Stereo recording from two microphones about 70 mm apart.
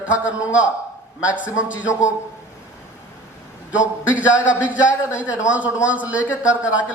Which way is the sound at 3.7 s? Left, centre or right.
Centre.